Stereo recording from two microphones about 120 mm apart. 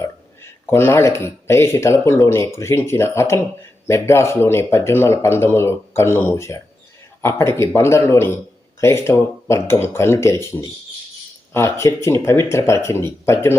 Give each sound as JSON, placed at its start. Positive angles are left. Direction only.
{"t": 0.7, "sound": "speech", "side_deg": 20}